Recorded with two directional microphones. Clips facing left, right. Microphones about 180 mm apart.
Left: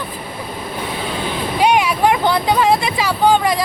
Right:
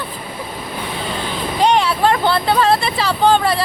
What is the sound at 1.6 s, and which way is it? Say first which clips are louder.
Speech: even; 10° left (ahead or behind).